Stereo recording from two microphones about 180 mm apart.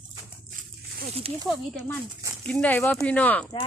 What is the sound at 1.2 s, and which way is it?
Speech, 35° right (ahead or behind).